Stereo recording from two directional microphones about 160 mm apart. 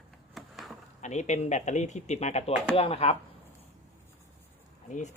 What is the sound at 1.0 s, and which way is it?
Speech, 45° left (ahead or behind).